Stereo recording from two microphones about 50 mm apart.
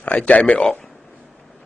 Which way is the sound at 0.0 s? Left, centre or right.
Left.